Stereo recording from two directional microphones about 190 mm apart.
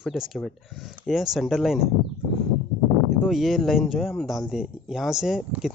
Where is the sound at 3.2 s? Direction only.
Centre (ahead or behind).